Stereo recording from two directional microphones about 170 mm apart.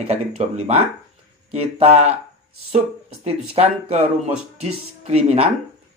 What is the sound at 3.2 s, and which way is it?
Speech, 35° right (ahead or behind).